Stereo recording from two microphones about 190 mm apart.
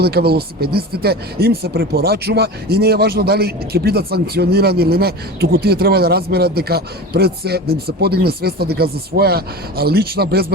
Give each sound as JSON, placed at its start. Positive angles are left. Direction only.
{"t": 0.0, "sound": "speech", "side_deg": -55}